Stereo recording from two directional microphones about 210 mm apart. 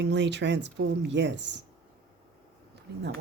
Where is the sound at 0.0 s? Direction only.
55° right (ahead or behind).